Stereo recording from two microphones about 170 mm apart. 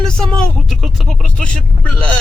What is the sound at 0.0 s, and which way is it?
Vehicle, 5° left (ahead or behind).